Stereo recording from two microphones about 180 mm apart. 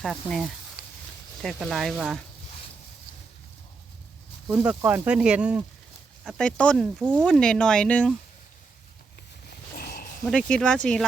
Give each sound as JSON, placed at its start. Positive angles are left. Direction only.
{"t": 0.0, "sound": "speech", "side_deg": 0}
{"t": 4.4, "sound": "speech", "side_deg": -5}
{"t": 7.0, "sound": "speech", "side_deg": -10}
{"t": 7.3, "sound": "speech", "side_deg": 5}
{"t": 9.7, "sound": "a sound", "side_deg": 55}
{"t": 10.2, "sound": "speech", "side_deg": 5}